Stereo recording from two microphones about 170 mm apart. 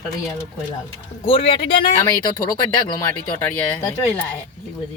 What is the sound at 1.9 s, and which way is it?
Speech, 15° left (ahead or behind).